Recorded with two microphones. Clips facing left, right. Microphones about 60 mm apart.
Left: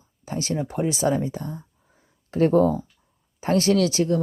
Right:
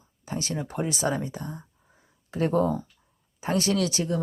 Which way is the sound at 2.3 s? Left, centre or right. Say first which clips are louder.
Left 6 dB; left.